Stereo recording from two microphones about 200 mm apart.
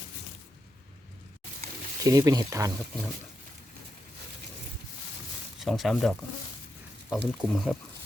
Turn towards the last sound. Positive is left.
turn(degrees=0)  # may be behind; listen again after turning